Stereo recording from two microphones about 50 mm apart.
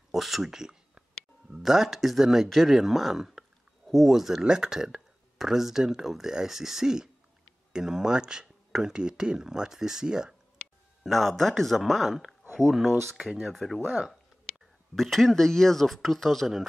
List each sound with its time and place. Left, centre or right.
0.1 s a sound: centre
1.5 s speech: centre
11.1 s speech: centre
13.2 s speech: centre
13.5 s speech: centre
15.0 s speech: centre